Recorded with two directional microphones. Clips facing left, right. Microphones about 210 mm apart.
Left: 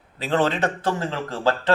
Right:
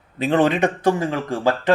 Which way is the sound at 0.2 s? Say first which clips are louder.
Right 4 dB; 15° right (ahead or behind).